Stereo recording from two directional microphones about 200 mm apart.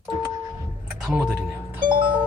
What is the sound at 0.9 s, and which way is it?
Music, 5° right (ahead or behind).